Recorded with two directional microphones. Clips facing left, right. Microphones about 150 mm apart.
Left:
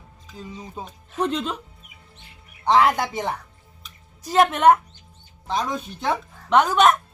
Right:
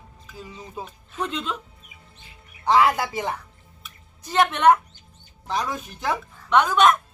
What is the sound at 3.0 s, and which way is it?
Speech, 25° left (ahead or behind).